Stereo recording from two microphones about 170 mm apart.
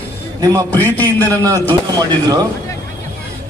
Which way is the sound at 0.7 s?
10° left (ahead or behind).